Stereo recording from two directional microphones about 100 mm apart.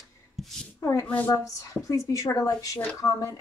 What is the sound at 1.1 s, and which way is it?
Speech, 20° left (ahead or behind).